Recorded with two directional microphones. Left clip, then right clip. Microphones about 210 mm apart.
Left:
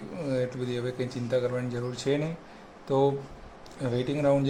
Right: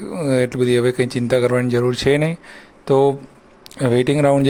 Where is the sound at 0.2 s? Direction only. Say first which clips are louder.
Right 12 dB; 40° right (ahead or behind).